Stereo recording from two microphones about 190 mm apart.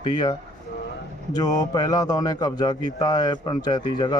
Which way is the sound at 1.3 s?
20° left (ahead or behind).